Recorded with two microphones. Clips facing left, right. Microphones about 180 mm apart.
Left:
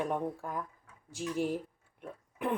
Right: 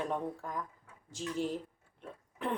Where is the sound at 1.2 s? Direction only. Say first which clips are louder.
Left 2 dB; 10° left (ahead or behind).